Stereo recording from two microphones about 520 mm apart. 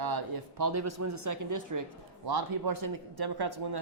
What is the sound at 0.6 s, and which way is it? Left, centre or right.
A man's voice, right.